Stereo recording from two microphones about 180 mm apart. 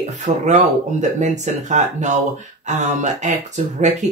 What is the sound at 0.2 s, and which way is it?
Speech, 40° right (ahead or behind).